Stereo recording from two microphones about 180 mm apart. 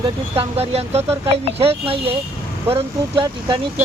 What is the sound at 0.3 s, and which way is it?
Speech, 35° right (ahead or behind).